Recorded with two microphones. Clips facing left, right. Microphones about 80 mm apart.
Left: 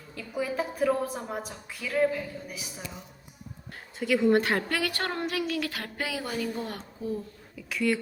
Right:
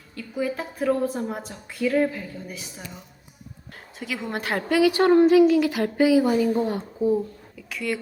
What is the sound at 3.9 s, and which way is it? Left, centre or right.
Speech, centre.